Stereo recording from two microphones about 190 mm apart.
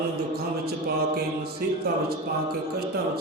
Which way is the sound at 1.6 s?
50° right (ahead or behind).